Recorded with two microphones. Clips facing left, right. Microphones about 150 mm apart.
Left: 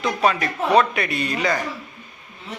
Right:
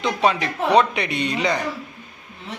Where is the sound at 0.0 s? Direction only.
20° right (ahead or behind).